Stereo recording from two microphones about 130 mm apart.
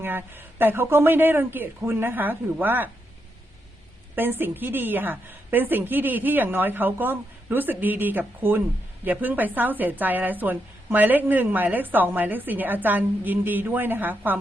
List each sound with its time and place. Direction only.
0.0 s a woman's voice: 15° right (ahead or behind)
4.1 s a woman's voice: 15° right (ahead or behind)